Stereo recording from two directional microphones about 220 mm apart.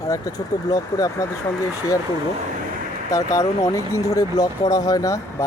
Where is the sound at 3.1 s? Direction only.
15° left (ahead or behind).